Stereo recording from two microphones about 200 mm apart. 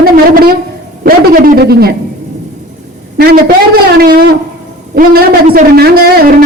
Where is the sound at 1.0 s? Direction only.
45° right (ahead or behind).